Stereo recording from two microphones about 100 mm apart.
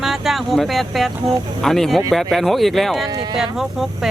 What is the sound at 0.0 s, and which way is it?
Speech, centre (ahead or behind).